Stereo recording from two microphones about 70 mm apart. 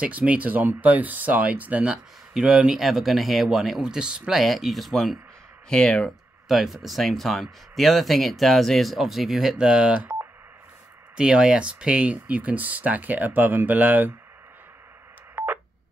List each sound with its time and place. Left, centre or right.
0.0 s speech: centre
6.5 s speech: centre
11.1 s speech: centre
15.3 s telephone dialing: right